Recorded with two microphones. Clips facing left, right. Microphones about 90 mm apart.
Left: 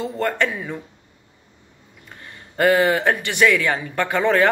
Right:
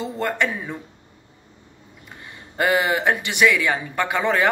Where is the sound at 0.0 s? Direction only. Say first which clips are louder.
Left 2 dB; 15° right (ahead or behind).